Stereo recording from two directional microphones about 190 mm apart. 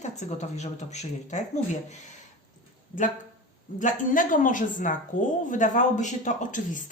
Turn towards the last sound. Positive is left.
turn(degrees=45)  # may be behind; listen again after turning